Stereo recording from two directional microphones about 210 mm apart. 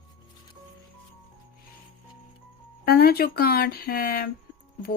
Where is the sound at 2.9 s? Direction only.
45° left (ahead or behind).